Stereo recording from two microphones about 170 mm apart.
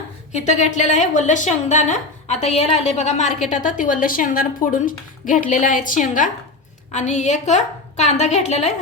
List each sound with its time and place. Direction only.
0.3 s a woman's voice: 45° left (ahead or behind)